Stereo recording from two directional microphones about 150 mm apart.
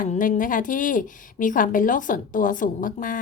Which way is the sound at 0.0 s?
60° left (ahead or behind).